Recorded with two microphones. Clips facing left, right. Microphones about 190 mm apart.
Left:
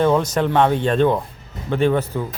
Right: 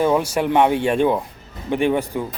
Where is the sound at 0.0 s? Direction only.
10° right (ahead or behind).